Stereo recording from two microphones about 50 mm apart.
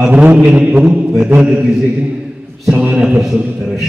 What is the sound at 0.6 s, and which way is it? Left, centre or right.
Chant, right.